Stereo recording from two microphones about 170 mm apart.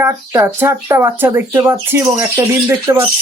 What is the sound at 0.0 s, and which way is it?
Speech, 15° right (ahead or behind).